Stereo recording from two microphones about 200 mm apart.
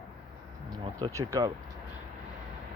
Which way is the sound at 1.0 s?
15° right (ahead or behind).